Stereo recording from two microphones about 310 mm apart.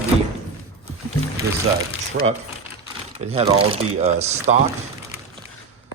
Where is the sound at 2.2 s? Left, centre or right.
Right.